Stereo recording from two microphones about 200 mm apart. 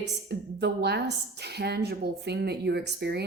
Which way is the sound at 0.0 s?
55° right (ahead or behind).